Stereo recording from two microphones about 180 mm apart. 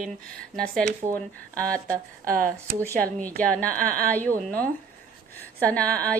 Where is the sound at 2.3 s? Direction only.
50° right (ahead or behind).